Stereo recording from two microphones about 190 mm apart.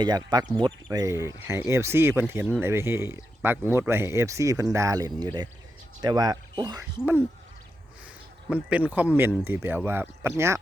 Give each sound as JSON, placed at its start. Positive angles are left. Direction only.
{"t": 0.0, "sound": "speech", "side_deg": -20}
{"t": 8.7, "sound": "speech", "side_deg": -5}